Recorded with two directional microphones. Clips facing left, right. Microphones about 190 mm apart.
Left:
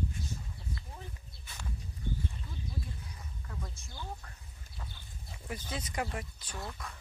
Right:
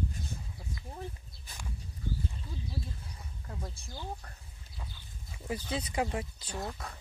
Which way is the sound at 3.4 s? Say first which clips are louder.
Right 3 dB; 30° right (ahead or behind).